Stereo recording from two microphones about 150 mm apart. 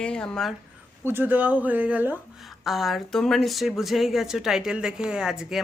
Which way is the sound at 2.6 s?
Centre (ahead or behind).